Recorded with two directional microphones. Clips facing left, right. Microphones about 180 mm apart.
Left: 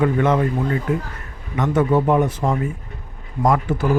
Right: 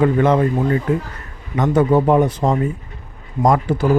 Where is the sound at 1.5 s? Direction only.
35° right (ahead or behind).